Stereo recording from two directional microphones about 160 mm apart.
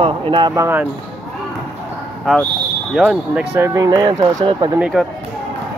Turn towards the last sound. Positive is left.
turn(degrees=0)  # may be behind; listen again after turning